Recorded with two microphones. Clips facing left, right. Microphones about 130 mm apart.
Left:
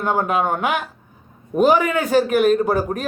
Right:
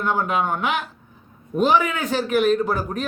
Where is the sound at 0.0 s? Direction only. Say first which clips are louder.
Left 2 dB; 45° left (ahead or behind).